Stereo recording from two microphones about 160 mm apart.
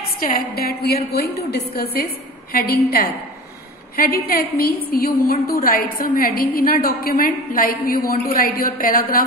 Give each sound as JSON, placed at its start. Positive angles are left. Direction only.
{"t": 0.2, "sound": "a woman's voice", "side_deg": 65}